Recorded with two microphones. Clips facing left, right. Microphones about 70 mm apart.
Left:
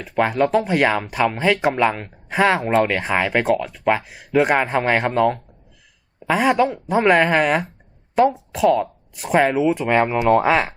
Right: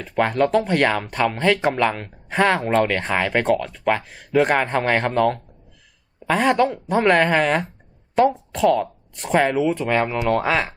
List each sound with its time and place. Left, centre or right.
0.0 s speech: centre